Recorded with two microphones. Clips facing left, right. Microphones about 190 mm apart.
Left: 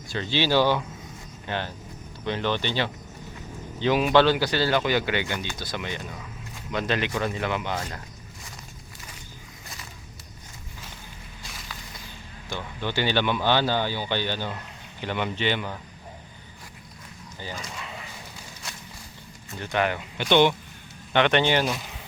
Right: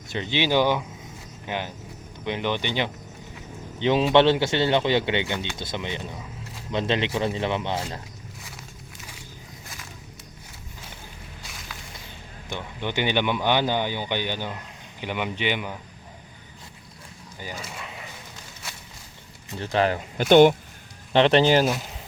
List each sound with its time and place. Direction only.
0.1 s speech: 20° right (ahead or behind)
12.5 s speech: 20° right (ahead or behind)
17.4 s speech: 10° right (ahead or behind)
19.5 s speech: 30° right (ahead or behind)
21.1 s speech: 30° right (ahead or behind)